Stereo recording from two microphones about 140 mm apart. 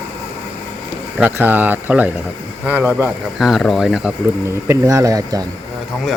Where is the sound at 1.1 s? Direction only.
10° right (ahead or behind).